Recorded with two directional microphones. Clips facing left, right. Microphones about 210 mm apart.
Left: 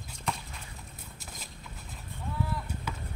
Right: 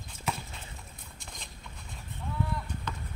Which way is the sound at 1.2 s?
5° left (ahead or behind).